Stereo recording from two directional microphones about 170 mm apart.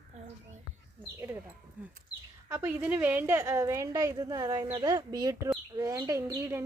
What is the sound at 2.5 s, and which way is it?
A woman's voice, 10° right (ahead or behind).